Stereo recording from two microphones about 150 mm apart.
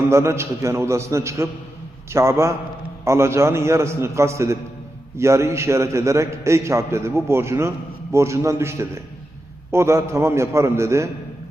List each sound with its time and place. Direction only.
0.1 s a man's voice: 20° right (ahead or behind)